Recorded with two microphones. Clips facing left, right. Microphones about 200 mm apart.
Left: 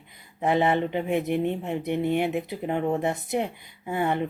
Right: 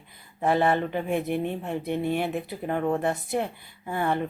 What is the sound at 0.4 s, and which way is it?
Speech, 20° left (ahead or behind).